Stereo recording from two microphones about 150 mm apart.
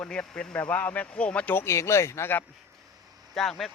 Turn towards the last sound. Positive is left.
turn(degrees=0)  # may be behind; listen again after turning